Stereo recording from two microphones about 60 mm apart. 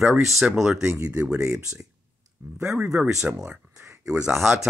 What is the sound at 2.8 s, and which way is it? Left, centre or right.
Speech, right.